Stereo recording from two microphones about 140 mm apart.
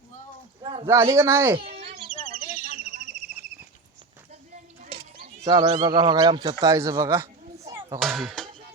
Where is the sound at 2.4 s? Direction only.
60° left (ahead or behind).